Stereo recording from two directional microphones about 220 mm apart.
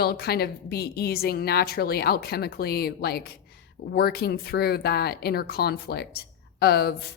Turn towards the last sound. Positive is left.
turn(degrees=45)  # may be behind; listen again after turning